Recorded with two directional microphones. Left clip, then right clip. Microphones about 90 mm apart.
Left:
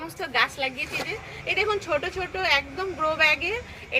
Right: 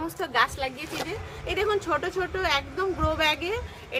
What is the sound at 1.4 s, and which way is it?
Speech, 30° right (ahead or behind).